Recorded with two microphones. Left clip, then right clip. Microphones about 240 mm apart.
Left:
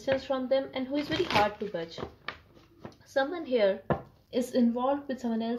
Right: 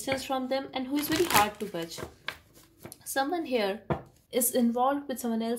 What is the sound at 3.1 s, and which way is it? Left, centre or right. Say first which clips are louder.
A woman's voice: even; right.